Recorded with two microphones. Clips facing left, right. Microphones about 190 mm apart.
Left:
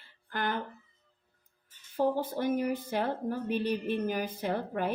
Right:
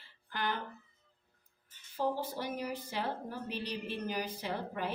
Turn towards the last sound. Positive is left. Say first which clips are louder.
# left 6 dB
turn(degrees=50)  # may be behind; listen again after turning